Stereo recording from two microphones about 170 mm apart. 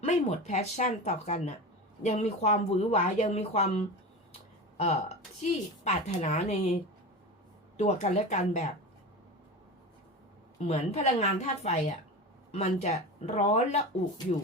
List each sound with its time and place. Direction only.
0.0 s a woman's voice: 40° left (ahead or behind)
7.8 s a woman's voice: 40° left (ahead or behind)
10.7 s a woman's voice: 40° left (ahead or behind)